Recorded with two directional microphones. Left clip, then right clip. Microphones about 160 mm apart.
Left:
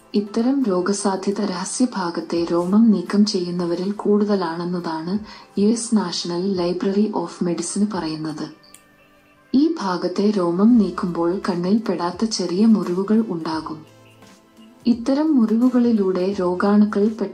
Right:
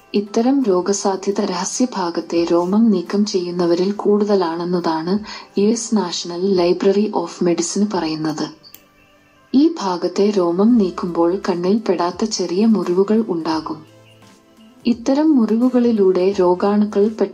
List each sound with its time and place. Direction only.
0.1 s a woman's voice: 20° right (ahead or behind)
9.5 s a woman's voice: 20° right (ahead or behind)
14.8 s a woman's voice: 20° right (ahead or behind)